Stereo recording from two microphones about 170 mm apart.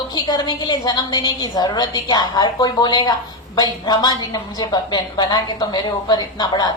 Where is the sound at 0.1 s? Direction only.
25° left (ahead or behind).